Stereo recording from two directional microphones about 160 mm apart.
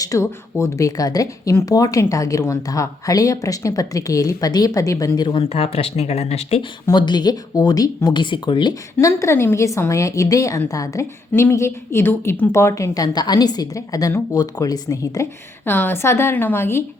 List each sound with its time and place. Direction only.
0.0 s speech: 20° left (ahead or behind); by 6.7 s 40° left (ahead or behind)
6.8 s speech: 25° left (ahead or behind)